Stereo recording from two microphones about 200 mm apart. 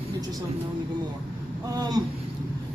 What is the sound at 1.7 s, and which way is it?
Speech, 20° right (ahead or behind).